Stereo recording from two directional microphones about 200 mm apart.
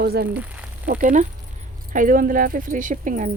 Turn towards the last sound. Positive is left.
turn(degrees=-40)  # may be behind; listen again after turning